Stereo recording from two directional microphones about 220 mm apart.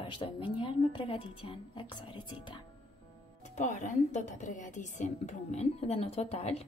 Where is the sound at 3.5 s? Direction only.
35° left (ahead or behind).